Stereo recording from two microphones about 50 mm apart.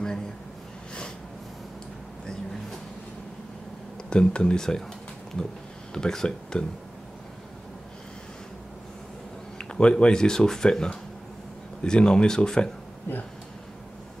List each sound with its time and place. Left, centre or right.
4.1 s speech: centre
9.6 s speech: centre